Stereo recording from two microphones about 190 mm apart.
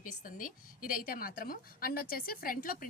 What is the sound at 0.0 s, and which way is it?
A woman's voice, 45° left (ahead or behind).